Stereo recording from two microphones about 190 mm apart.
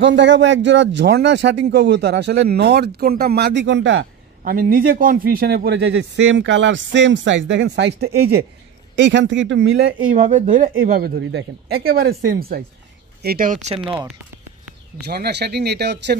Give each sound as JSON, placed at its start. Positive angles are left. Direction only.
{"t": 0.0, "sound": "speech", "side_deg": -70}
{"t": 4.5, "sound": "speech", "side_deg": -50}
{"t": 8.9, "sound": "speech", "side_deg": -75}
{"t": 10.0, "sound": "speech", "side_deg": -40}
{"t": 10.7, "sound": "speech", "side_deg": -60}
{"t": 15.0, "sound": "speech", "side_deg": -60}